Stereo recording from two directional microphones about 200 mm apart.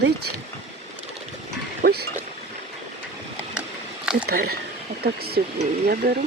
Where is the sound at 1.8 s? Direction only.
45° right (ahead or behind).